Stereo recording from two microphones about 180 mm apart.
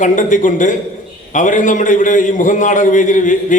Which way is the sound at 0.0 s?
45° left (ahead or behind).